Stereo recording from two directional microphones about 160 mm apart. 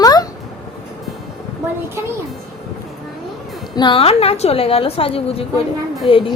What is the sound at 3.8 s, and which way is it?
A woman's voice, 30° left (ahead or behind).